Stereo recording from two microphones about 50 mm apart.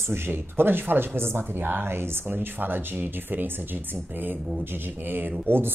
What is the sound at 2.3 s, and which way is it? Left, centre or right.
Speech, right.